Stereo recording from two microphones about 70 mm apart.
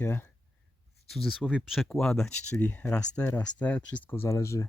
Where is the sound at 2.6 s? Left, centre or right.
Left.